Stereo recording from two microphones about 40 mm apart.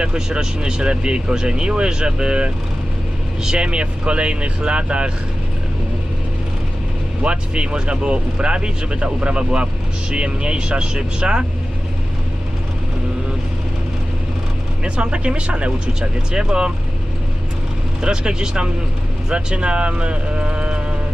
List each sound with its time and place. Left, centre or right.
0.0 s speech: centre
7.2 s speech: right
15.0 s speech: right
18.0 s speech: right